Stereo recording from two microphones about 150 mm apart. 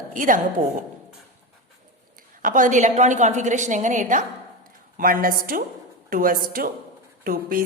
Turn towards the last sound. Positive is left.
turn(degrees=-75)  # may be behind; listen again after turning